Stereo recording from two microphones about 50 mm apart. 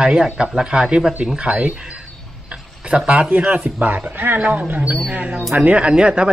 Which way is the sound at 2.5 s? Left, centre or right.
Centre.